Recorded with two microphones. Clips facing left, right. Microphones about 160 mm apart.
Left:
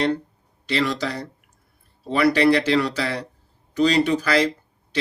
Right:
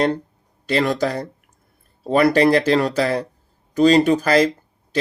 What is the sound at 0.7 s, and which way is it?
Speech, 50° right (ahead or behind).